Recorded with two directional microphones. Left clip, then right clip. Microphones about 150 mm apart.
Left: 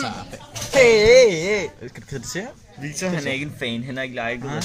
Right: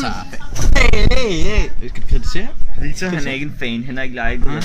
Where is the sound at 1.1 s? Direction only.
25° left (ahead or behind).